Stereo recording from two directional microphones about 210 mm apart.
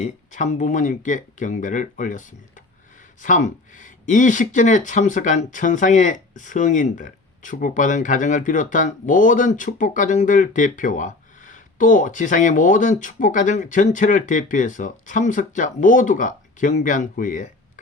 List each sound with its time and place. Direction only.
0.0 s speech: 35° left (ahead or behind)